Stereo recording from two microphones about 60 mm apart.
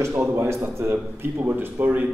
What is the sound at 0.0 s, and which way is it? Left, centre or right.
A man's voice, right.